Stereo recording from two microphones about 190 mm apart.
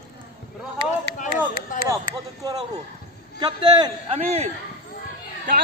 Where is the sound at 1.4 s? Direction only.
15° right (ahead or behind).